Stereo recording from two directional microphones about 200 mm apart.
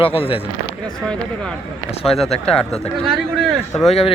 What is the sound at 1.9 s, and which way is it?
Speech, 30° left (ahead or behind).